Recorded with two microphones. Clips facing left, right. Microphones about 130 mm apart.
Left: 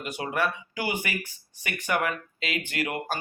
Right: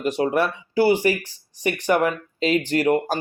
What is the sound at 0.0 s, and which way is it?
Speech, 35° right (ahead or behind).